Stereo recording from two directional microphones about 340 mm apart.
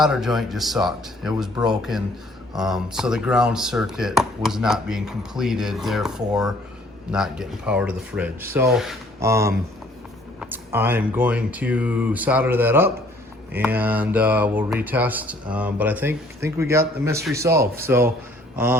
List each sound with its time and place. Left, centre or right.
0.0 s speech: centre